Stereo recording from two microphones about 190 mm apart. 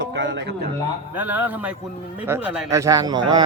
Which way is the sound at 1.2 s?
10° right (ahead or behind).